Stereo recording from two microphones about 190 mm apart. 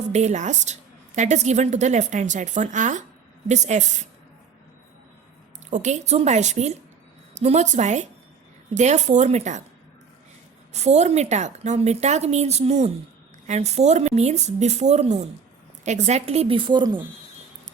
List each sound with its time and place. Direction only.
0.1 s speech: 35° right (ahead or behind)
5.7 s speech: 40° right (ahead or behind)
10.7 s speech: 35° right (ahead or behind)